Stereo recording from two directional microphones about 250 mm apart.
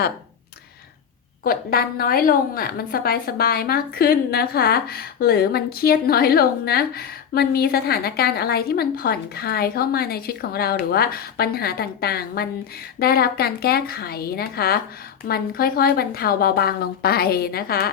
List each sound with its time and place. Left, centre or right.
1.5 s a woman's voice: left